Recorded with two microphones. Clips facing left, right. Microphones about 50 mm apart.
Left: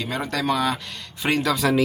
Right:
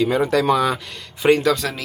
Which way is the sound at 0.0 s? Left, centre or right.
Centre.